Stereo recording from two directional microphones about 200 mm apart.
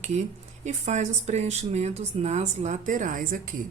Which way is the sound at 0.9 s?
35° right (ahead or behind).